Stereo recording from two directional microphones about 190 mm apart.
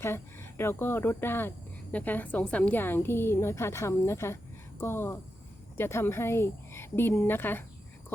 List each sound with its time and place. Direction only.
0.0 s speech: 15° left (ahead or behind)